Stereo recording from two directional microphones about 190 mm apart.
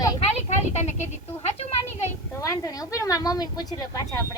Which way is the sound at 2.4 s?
15° left (ahead or behind).